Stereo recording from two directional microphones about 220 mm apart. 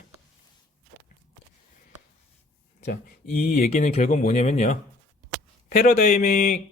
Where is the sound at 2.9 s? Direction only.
40° left (ahead or behind).